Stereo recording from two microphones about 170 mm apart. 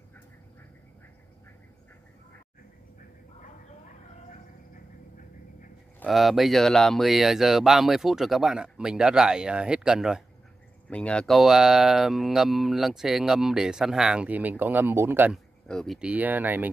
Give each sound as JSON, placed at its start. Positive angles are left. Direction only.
{"t": 6.0, "sound": "speech", "side_deg": 0}
{"t": 15.7, "sound": "speech", "side_deg": 0}